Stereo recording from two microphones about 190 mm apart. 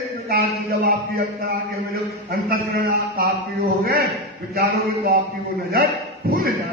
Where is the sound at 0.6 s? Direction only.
55° right (ahead or behind).